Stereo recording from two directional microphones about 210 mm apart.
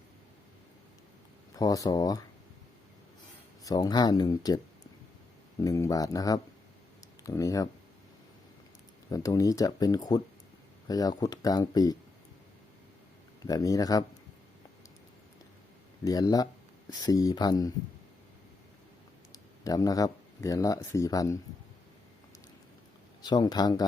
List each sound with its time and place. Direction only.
1.5 s speech: 15° left (ahead or behind)
3.6 s speech: 15° left (ahead or behind)
9.0 s speech: 15° left (ahead or behind)
13.5 s speech: 15° left (ahead or behind)
16.0 s speech: 15° left (ahead or behind)
19.3 s speech: 15° left (ahead or behind)
23.2 s speech: 20° left (ahead or behind)